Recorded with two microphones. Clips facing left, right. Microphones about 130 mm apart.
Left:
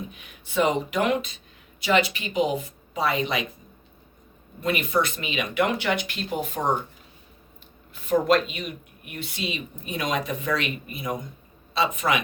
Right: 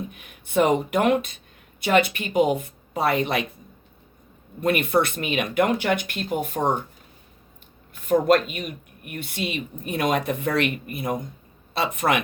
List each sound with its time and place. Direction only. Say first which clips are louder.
0.1 s a woman's voice: right 7 dB; 55° right (ahead or behind)
4.6 s speech: right 3 dB; 55° right (ahead or behind)
8.0 s a woman's voice: right 2 dB; 50° right (ahead or behind)